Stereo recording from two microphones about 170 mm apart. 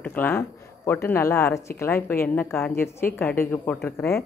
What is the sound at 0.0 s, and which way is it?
Speech, 10° left (ahead or behind).